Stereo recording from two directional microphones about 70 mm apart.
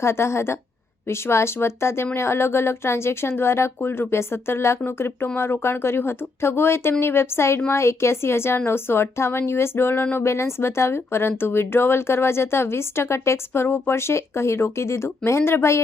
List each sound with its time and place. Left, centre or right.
0.0 s speech: left
10.2 s speech: left